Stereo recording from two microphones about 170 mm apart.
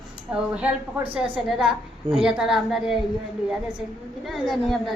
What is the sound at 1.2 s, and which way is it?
A woman's voice, 5° right (ahead or behind).